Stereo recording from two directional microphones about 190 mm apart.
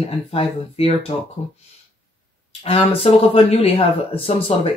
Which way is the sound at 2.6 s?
30° left (ahead or behind).